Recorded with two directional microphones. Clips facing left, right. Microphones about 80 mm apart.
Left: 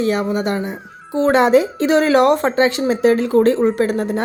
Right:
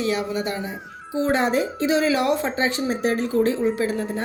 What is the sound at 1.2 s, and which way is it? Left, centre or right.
Speech, left.